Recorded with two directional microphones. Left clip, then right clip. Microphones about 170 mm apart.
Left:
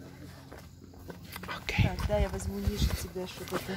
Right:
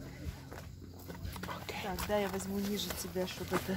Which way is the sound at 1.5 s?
30° left (ahead or behind).